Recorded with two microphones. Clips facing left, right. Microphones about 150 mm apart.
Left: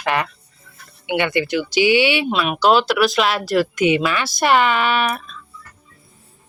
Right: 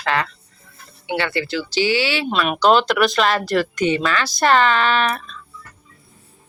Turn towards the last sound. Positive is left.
turn(degrees=5)  # may be behind; listen again after turning